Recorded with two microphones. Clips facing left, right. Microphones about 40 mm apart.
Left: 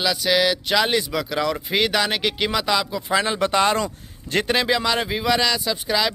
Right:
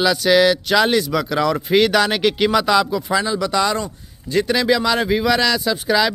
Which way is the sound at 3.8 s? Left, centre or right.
Left.